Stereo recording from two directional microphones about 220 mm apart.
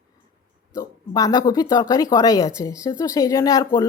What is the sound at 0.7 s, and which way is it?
Speech, 15° left (ahead or behind).